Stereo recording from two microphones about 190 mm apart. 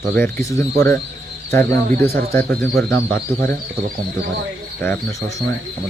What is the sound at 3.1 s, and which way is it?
Speech, 55° right (ahead or behind).